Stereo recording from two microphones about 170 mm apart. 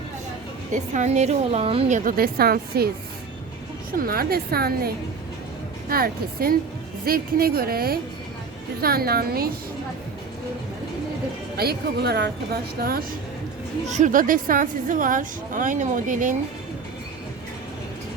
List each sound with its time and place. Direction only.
0.7 s a woman's voice: 45° right (ahead or behind)
2.0 s a woman's voice: 60° right (ahead or behind)
3.9 s a woman's voice: 60° right (ahead or behind)
5.9 s a woman's voice: 60° right (ahead or behind)
11.5 s a woman's voice: 70° right (ahead or behind)
13.8 s a woman's voice: 45° right (ahead or behind)